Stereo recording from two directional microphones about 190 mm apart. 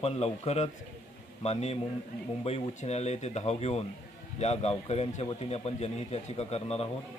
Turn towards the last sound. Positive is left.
turn(degrees=30)  # may be behind; listen again after turning